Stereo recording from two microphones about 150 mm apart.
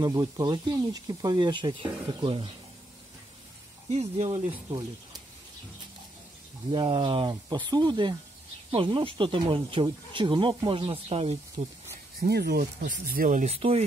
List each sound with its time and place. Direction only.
0.0 s speech: 25° right (ahead or behind)
3.9 s speech: 45° right (ahead or behind)
6.7 s speech: 35° right (ahead or behind)
12.2 s speech: 90° right; by 13.8 s 40° right (ahead or behind)